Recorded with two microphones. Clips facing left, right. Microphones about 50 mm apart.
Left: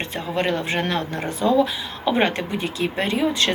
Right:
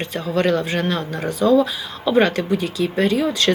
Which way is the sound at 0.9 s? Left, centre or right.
Left.